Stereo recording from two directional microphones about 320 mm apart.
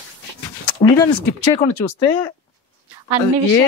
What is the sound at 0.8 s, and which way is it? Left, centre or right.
Speech, centre.